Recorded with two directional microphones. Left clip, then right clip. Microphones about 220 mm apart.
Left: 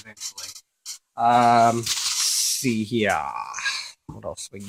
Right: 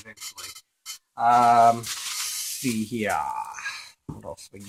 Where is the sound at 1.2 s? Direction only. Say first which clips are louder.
Left 1 dB; 45° left (ahead or behind).